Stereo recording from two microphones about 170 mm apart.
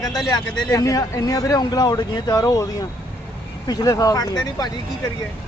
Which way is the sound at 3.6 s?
20° left (ahead or behind).